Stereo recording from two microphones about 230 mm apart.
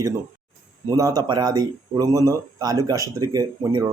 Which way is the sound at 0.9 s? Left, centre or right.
Centre.